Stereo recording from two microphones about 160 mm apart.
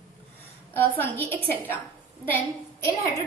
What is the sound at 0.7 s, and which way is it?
A woman's voice, 10° left (ahead or behind).